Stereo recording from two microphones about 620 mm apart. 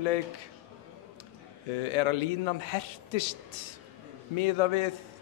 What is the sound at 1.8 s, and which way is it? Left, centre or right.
A man's voice, left.